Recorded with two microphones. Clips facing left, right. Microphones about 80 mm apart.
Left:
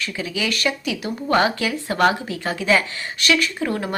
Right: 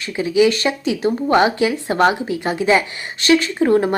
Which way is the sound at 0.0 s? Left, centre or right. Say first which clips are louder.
Right 10 dB; right.